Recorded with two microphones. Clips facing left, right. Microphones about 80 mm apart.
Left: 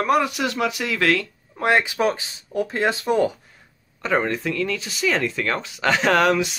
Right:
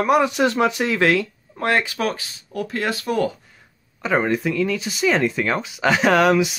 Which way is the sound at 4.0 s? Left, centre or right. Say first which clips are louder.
Right 2 dB; centre.